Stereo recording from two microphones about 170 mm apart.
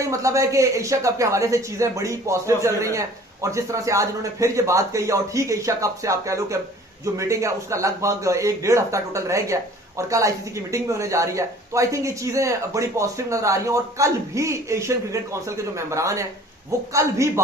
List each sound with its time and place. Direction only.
0.0 s speech: 20° right (ahead or behind)